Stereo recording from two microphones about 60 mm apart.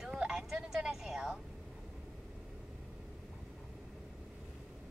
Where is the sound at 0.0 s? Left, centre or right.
Centre.